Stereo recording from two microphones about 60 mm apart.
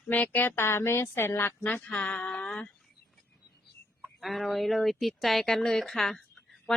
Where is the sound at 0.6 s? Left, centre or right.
Left.